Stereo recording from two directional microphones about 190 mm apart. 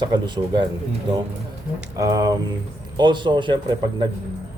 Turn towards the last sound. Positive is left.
turn(degrees=-25)  # may be behind; listen again after turning